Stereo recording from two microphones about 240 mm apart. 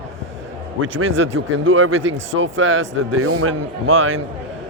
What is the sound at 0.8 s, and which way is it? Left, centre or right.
Speech, right.